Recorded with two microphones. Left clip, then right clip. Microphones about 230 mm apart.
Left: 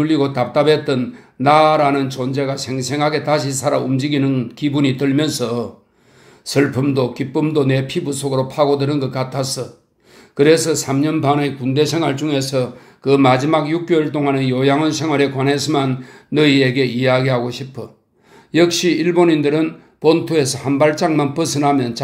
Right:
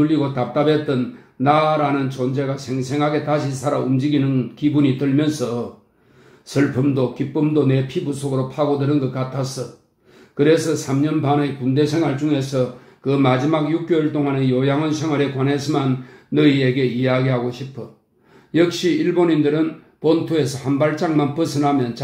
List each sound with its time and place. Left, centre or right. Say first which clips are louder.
0.0 s a man's voice: left 2 dB; left
6.5 s a man's voice: left 3 dB; left